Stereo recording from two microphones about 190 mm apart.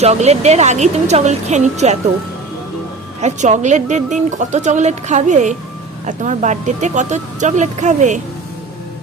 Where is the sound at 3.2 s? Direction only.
40° right (ahead or behind).